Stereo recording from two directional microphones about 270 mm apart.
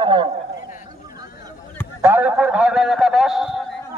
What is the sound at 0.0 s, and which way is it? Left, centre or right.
Speech, centre.